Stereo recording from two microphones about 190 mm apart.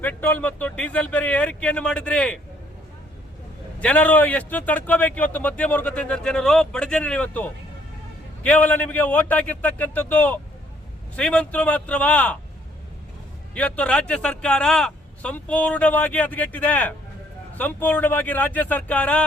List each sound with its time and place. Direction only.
0.0 s a man's voice: 10° left (ahead or behind)
3.8 s a man's voice: 5° left (ahead or behind)
13.5 s a man's voice: 5° left (ahead or behind)